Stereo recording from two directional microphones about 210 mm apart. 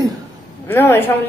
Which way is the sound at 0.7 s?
10° left (ahead or behind).